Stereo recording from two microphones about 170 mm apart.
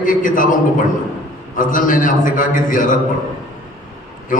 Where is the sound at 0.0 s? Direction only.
50° left (ahead or behind).